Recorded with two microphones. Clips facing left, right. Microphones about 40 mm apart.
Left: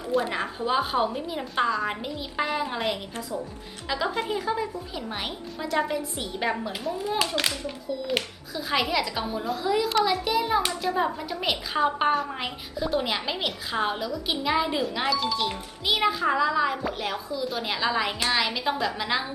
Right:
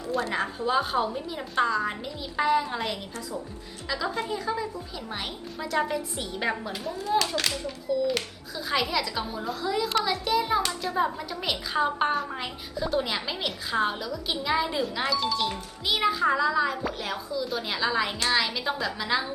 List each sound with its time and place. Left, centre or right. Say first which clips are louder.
0.1 s a woman's voice: left 2 dB; centre
0.9 s a child's voice: left 2 dB; left
1.4 s a woman's voice: even; centre
3.8 s a child's voice: left 2 dB; left
5.7 s a woman's voice: left 1 dB; centre
6.5 s a woman's voice: left 2 dB; centre
7.0 s a child's voice: right 2 dB; centre
8.5 s a woman's voice: left 2 dB; centre